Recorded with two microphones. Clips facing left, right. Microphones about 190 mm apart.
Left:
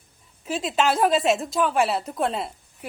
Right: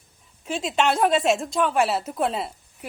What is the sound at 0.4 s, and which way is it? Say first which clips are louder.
A woman's voice: even; centre (ahead or behind).